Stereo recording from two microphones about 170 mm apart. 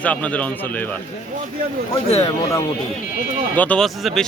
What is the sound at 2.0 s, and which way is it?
Speech, 35° left (ahead or behind).